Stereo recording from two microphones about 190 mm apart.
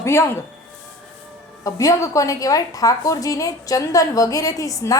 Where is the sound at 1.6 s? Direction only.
15° left (ahead or behind).